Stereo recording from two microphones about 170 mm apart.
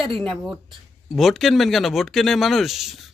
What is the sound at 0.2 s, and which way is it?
Speech, centre (ahead or behind).